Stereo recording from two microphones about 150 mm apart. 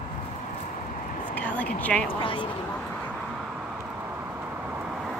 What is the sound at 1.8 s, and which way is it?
Speech, 10° left (ahead or behind).